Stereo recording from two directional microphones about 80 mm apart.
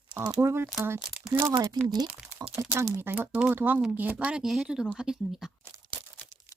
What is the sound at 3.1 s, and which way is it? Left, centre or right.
Speech, centre.